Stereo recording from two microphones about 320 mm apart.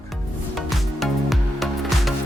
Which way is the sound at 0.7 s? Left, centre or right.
Centre.